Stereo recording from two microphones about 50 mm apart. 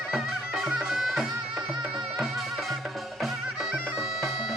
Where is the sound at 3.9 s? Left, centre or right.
Centre.